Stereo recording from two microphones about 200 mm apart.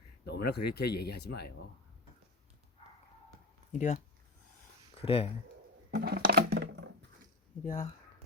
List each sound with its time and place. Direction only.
0.3 s speech: 55° left (ahead or behind)
3.7 s speech: 40° left (ahead or behind)
5.9 s a sound: 50° right (ahead or behind)
7.6 s speech: 45° left (ahead or behind)